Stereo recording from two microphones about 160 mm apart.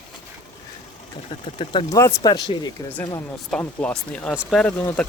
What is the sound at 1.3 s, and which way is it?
Speech, 30° left (ahead or behind).